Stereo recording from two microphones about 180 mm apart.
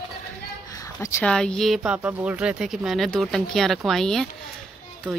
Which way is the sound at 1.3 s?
5° left (ahead or behind).